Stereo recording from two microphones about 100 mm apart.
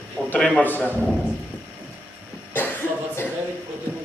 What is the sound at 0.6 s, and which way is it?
Speech, 20° left (ahead or behind).